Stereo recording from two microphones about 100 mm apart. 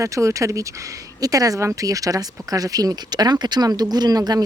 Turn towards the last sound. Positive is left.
turn(degrees=-40)  # may be behind; listen again after turning